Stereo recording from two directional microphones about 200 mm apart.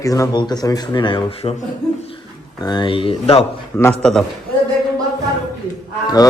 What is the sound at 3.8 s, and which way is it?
Speech, 5° left (ahead or behind).